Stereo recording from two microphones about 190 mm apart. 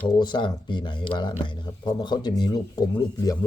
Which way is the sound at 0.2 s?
25° left (ahead or behind).